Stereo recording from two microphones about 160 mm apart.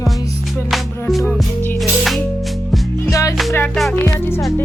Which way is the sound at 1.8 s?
Centre (ahead or behind).